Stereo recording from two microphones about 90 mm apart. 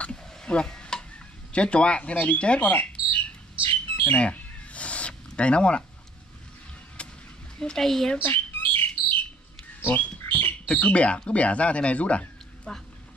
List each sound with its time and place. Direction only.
0.0 s stir: 10° left (ahead or behind)
1.5 s speech: 10° left (ahead or behind)
3.6 s bird: 20° left (ahead or behind)
7.0 s a sound: 15° left (ahead or behind)
7.5 s speech: 5° left (ahead or behind)
8.2 s squawk: 20° left (ahead or behind)
9.8 s bird: 25° left (ahead or behind)
10.7 s speech: 15° left (ahead or behind)